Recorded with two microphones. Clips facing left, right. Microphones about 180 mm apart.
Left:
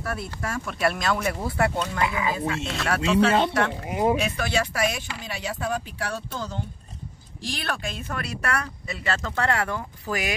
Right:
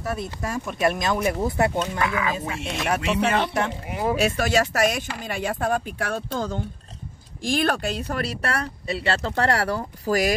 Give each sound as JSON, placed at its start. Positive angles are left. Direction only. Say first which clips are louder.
{"t": 0.0, "sound": "speech", "louder": "right 2 dB", "side_deg": -20}
{"t": 2.0, "sound": "speech", "louder": "right 1 dB", "side_deg": 20}
{"t": 2.3, "sound": "speech", "louder": "left 1 dB", "side_deg": -20}
{"t": 3.0, "sound": "speech", "louder": "left 5 dB", "side_deg": 25}
{"t": 4.2, "sound": "speech", "louder": "right 5 dB", "side_deg": -40}
{"t": 7.4, "sound": "speech", "louder": "right 8 dB", "side_deg": -45}